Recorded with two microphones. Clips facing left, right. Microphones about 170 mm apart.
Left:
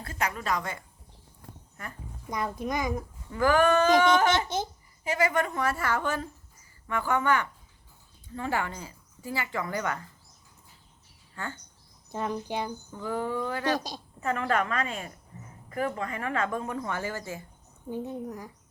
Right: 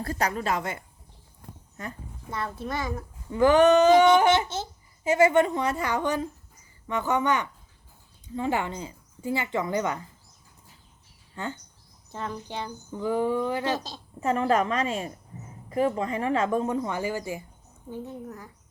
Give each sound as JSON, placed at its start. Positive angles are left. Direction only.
{"t": 0.0, "sound": "a woman's voice", "side_deg": -35}
{"t": 2.3, "sound": "a child's voice", "side_deg": 15}
{"t": 3.3, "sound": "speech", "side_deg": -20}
{"t": 4.4, "sound": "a child's voice", "side_deg": 15}
{"t": 5.0, "sound": "speech", "side_deg": -25}
{"t": 11.4, "sound": "speech", "side_deg": -20}
{"t": 12.1, "sound": "a child's voice", "side_deg": 15}
{"t": 12.9, "sound": "speech", "side_deg": -15}
{"t": 13.7, "sound": "a child's voice", "side_deg": 15}
{"t": 14.2, "sound": "speech", "side_deg": -25}
{"t": 17.9, "sound": "a child's voice", "side_deg": 15}